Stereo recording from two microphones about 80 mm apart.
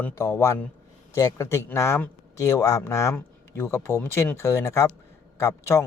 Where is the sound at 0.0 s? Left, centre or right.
Left.